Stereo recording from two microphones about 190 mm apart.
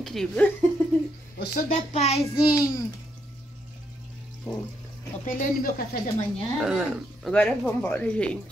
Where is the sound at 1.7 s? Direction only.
35° left (ahead or behind).